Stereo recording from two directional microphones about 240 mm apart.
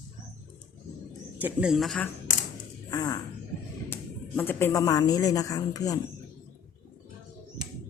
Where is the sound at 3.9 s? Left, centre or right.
Centre.